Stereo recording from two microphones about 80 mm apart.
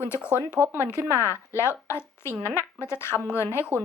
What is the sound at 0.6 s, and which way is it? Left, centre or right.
Speech, right.